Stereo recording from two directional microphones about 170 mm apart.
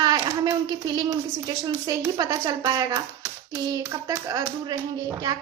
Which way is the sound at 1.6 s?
25° right (ahead or behind).